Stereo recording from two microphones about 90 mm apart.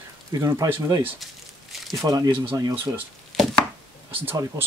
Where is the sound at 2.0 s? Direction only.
40° right (ahead or behind).